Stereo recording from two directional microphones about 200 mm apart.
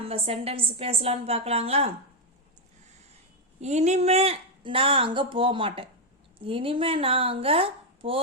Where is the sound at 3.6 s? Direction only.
35° right (ahead or behind).